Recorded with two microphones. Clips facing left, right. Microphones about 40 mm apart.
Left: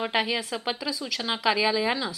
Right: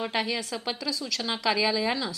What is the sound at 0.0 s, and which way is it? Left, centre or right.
A woman's voice, centre.